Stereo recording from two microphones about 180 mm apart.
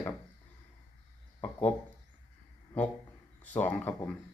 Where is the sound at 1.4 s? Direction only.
10° left (ahead or behind).